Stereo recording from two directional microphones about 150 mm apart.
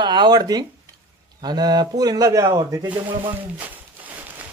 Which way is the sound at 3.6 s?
10° right (ahead or behind).